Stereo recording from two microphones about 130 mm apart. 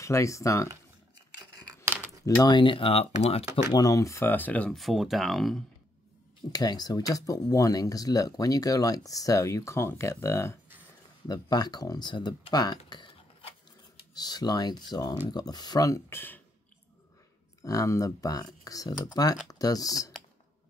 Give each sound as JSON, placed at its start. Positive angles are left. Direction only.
{"t": 0.0, "sound": "speech", "side_deg": 25}
{"t": 2.4, "sound": "speech", "side_deg": 40}
{"t": 3.7, "sound": "speech", "side_deg": 25}
{"t": 4.7, "sound": "speech", "side_deg": 0}
{"t": 6.5, "sound": "speech", "side_deg": 30}
{"t": 14.1, "sound": "speech", "side_deg": 30}
{"t": 17.6, "sound": "speech", "side_deg": 25}